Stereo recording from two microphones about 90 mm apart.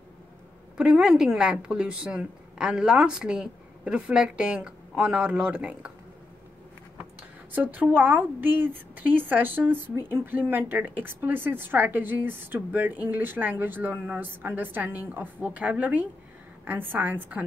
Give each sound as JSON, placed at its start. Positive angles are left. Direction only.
{"t": 0.7, "sound": "speech", "side_deg": -10}
{"t": 7.5, "sound": "speech", "side_deg": -20}